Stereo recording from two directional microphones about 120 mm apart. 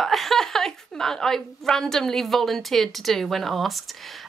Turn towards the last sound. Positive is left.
turn(degrees=0)  # may be behind; listen again after turning